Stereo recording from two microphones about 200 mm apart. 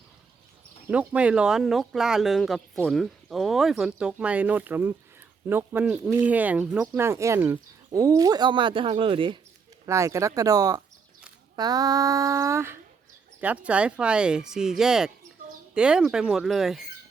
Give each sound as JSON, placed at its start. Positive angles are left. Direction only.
{"t": 0.9, "sound": "speech", "side_deg": -5}
{"t": 9.8, "sound": "speech", "side_deg": -15}